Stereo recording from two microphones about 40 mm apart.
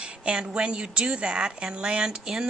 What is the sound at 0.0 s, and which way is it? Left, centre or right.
A woman's voice, right.